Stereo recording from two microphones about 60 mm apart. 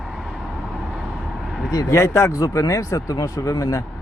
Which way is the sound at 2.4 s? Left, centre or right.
Left.